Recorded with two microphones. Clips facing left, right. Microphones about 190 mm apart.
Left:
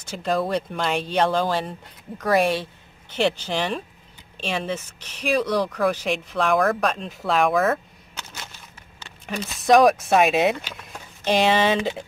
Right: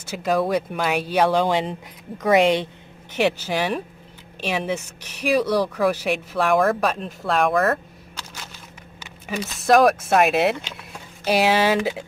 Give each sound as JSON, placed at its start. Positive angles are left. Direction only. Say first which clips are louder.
{"t": 0.0, "sound": "speech", "louder": "right 2 dB", "side_deg": -10}
{"t": 3.1, "sound": "speech", "louder": "right 1 dB", "side_deg": -10}
{"t": 9.0, "sound": "speech", "louder": "right 2 dB", "side_deg": -10}